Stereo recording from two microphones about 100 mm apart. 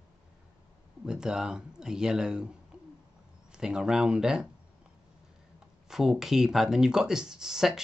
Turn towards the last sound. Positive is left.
turn(degrees=-5)  # may be behind; listen again after turning